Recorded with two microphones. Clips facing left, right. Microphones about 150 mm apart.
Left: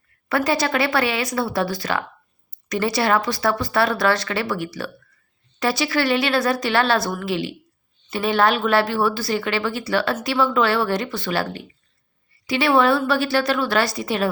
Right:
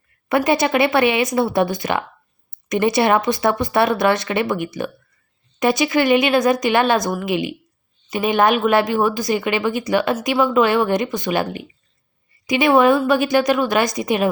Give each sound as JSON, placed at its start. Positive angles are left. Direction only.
{"t": 0.3, "sound": "speech", "side_deg": -20}